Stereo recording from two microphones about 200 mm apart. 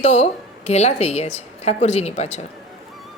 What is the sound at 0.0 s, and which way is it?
A woman's voice, 35° left (ahead or behind).